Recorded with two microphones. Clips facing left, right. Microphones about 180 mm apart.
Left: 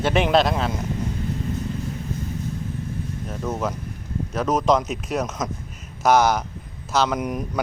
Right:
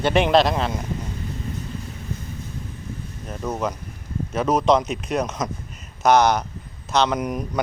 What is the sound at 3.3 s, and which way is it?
Speech, centre (ahead or behind).